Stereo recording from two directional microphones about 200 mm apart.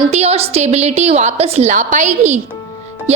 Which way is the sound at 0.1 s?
30° right (ahead or behind).